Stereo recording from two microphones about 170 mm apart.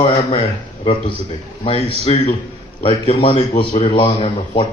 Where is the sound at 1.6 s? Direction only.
35° left (ahead or behind).